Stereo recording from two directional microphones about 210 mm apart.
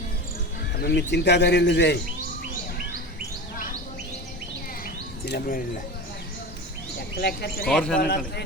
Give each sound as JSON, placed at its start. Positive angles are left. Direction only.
{"t": 0.8, "sound": "speech", "side_deg": 50}
{"t": 5.2, "sound": "speech", "side_deg": 45}
{"t": 7.2, "sound": "speech", "side_deg": 50}
{"t": 7.7, "sound": "a man's voice", "side_deg": 5}